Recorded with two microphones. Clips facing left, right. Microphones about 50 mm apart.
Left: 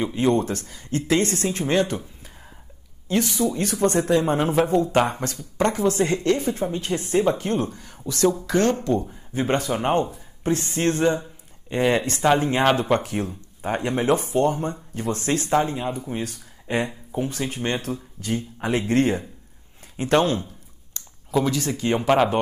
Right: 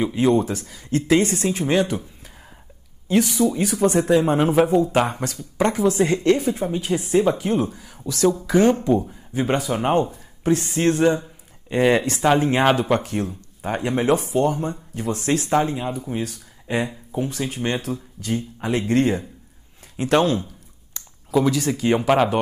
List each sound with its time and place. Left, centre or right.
0.0 s speech: centre
3.1 s speech: centre
18.6 s speech: centre
18.9 s speech: centre
21.0 s clicking: centre
21.3 s speech: centre